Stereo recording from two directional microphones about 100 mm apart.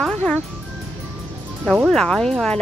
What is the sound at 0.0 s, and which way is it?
Music, 10° left (ahead or behind).